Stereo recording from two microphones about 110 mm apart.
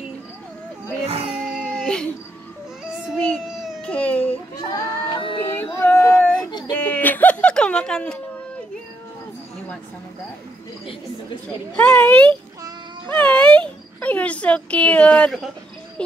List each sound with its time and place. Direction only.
1.0 s music: 65° right (ahead or behind)
1.4 s dog: 5° left (ahead or behind)
3.8 s baby cry: 10° left (ahead or behind)
4.6 s child singing: 25° left (ahead or behind)
5.1 s music: 55° left (ahead or behind)
5.8 s a sound: 20° left (ahead or behind)
11.9 s a child's voice: 15° left (ahead or behind)
13.1 s a sound: 10° left (ahead or behind)